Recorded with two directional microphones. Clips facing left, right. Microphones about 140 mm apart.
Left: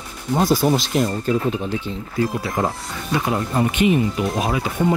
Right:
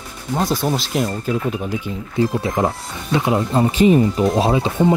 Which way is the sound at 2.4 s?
25° right (ahead or behind).